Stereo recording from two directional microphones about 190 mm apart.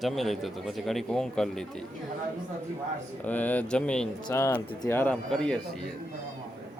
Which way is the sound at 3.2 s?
10° left (ahead or behind).